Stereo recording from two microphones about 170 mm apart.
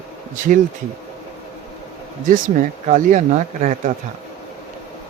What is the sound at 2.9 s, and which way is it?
Speech, 45° right (ahead or behind).